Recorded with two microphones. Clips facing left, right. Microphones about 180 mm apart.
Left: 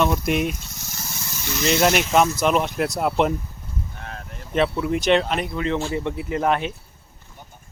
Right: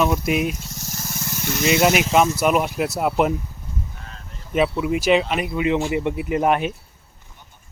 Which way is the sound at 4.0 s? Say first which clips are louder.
Left 6 dB; 65° left (ahead or behind).